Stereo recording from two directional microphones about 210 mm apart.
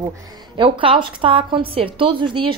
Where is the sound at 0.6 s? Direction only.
25° right (ahead or behind).